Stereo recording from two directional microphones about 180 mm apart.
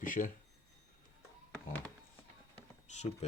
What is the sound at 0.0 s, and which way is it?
Speech, 50° left (ahead or behind).